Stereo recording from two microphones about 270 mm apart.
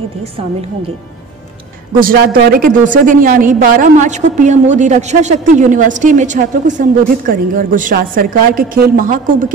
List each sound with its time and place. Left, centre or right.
0.2 s a woman's voice: right